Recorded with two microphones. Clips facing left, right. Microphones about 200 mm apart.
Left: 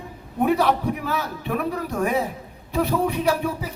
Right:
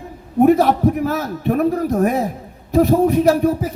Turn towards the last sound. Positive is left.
turn(degrees=-45)  # may be behind; listen again after turning